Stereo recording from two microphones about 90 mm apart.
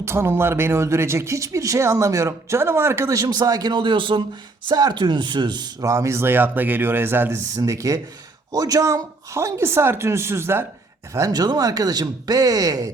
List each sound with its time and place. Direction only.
0.0 s speech: 30° right (ahead or behind); by 4.2 s 65° right (ahead or behind)
4.7 s speech: 50° right (ahead or behind)
5.8 s speech: 35° right (ahead or behind)
7.5 s speech: 40° right (ahead or behind)
11.3 s speech: 45° right (ahead or behind)